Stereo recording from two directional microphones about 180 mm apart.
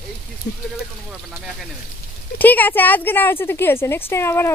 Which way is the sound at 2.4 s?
10° left (ahead or behind).